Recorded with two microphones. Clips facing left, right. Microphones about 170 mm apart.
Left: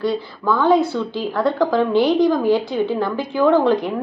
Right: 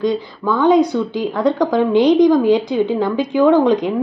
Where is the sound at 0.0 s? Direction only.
20° right (ahead or behind).